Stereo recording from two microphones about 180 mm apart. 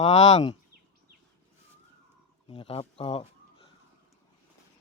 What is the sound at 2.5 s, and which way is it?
Speech, 30° left (ahead or behind).